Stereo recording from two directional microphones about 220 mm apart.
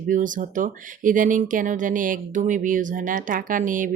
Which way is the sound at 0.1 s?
35° right (ahead or behind).